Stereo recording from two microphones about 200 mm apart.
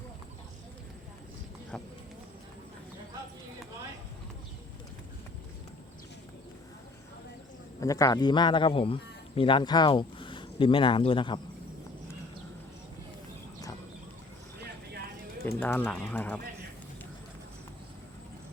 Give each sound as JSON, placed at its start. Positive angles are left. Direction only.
{"t": 7.8, "sound": "a man's voice", "side_deg": 15}
{"t": 15.4, "sound": "speech", "side_deg": 10}